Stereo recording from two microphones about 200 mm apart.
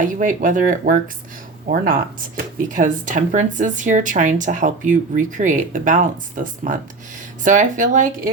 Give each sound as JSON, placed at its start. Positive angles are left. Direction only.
{"t": 0.0, "sound": "speech", "side_deg": -40}